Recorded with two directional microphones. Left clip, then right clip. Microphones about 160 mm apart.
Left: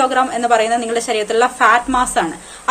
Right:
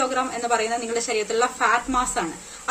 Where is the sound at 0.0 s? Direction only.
15° right (ahead or behind).